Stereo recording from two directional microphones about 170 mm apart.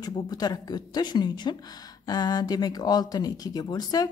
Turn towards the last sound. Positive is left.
turn(degrees=25)  # may be behind; listen again after turning